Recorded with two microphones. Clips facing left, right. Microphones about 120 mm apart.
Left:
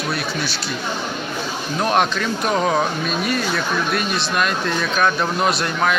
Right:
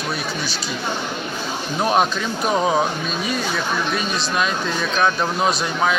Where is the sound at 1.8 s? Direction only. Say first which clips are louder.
Even; 10° right (ahead or behind).